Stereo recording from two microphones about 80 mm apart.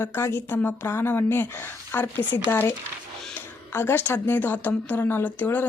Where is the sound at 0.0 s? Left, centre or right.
Left.